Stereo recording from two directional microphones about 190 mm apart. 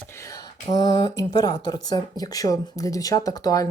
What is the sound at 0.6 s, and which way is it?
Speech, 20° left (ahead or behind).